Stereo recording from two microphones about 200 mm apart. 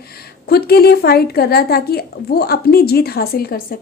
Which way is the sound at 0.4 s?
50° left (ahead or behind).